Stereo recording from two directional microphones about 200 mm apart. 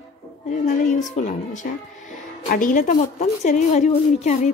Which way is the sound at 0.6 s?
40° left (ahead or behind).